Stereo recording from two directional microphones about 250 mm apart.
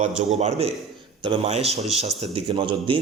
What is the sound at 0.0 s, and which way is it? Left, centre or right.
A man's voice, right.